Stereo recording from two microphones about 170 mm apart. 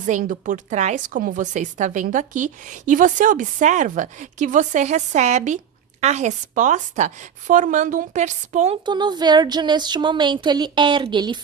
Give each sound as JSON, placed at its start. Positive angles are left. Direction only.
{"t": 0.0, "sound": "a woman's voice", "side_deg": -50}
{"t": 8.8, "sound": "speech", "side_deg": -25}